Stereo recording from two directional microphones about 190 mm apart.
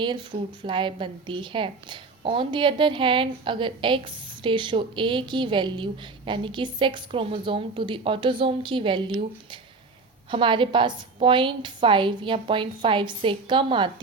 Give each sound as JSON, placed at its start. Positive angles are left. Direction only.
{"t": 0.0, "sound": "a woman's voice", "side_deg": -25}